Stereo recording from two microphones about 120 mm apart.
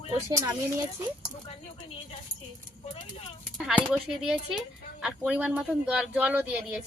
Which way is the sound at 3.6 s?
5° right (ahead or behind).